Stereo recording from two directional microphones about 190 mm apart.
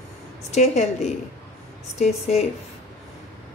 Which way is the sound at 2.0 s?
35° left (ahead or behind).